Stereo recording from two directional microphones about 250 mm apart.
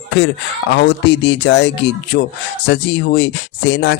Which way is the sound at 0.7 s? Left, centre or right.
Left.